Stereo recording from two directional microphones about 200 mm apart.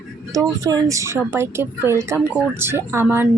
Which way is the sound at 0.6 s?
15° right (ahead or behind).